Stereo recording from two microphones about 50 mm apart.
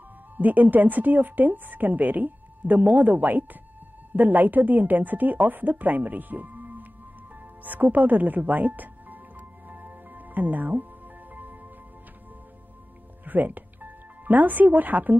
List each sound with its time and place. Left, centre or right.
0.4 s speech: right
9.7 s music: right
13.2 s music: right